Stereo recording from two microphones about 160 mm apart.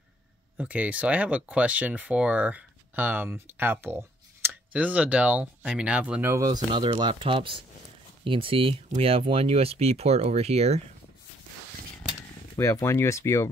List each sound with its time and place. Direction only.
0.6 s speech: 10° right (ahead or behind)
6.3 s speech: 25° right (ahead or behind); by 10.8 s 40° right (ahead or behind)
12.5 s speech: 20° left (ahead or behind)